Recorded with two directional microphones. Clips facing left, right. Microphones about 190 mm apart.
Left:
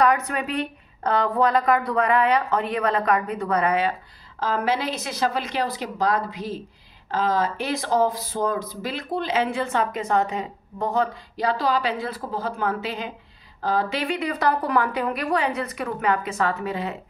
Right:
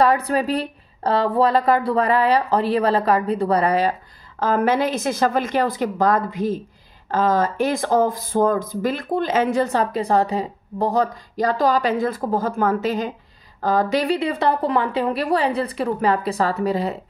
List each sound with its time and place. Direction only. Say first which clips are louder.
0.0 s speech: right 3 dB; 30° right (ahead or behind)
4.4 s speech: right 5 dB; 50° right (ahead or behind)